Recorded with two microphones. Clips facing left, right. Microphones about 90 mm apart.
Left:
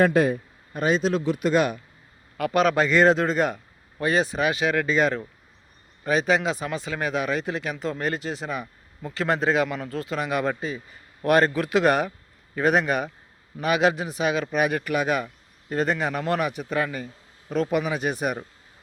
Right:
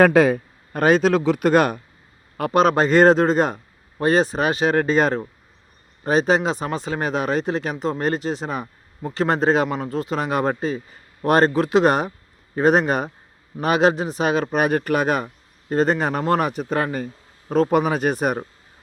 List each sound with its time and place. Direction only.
0.0 s a man's voice: 90° right
0.7 s a man's voice: 60° right (ahead or behind); by 1.4 s 80° right
1.4 s speech: 55° right (ahead or behind)
2.4 s a man's voice: 30° right (ahead or behind)